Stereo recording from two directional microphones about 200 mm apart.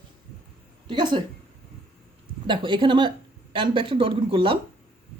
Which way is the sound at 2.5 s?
25° right (ahead or behind).